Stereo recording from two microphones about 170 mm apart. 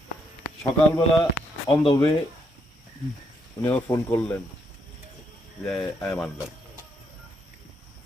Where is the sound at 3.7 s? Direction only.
10° left (ahead or behind).